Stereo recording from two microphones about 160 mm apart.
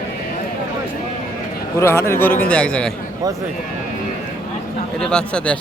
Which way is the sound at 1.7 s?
15° left (ahead or behind).